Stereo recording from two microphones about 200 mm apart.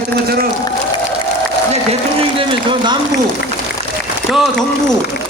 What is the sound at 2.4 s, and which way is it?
Speech, 25° right (ahead or behind).